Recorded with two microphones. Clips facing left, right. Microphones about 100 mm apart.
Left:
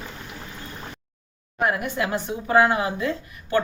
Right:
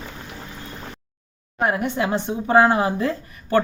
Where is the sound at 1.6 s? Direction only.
30° right (ahead or behind).